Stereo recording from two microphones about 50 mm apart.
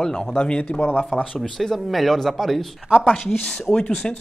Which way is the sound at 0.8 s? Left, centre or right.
Left.